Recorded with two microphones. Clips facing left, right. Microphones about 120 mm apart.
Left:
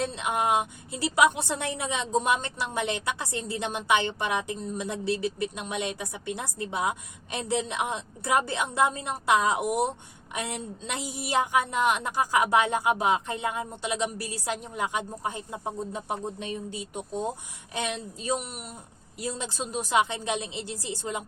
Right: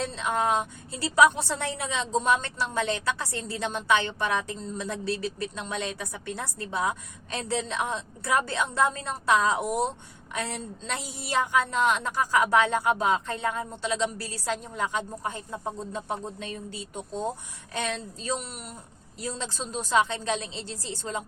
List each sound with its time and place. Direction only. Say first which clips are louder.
0.0 s a woman's voice: even; 15° left (ahead or behind)